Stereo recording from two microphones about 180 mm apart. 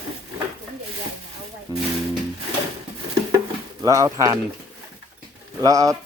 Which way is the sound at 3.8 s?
20° right (ahead or behind).